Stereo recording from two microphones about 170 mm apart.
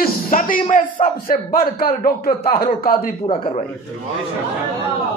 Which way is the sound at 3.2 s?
35° left (ahead or behind).